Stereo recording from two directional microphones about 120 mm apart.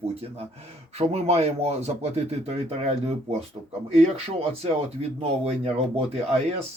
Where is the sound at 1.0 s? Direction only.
60° right (ahead or behind).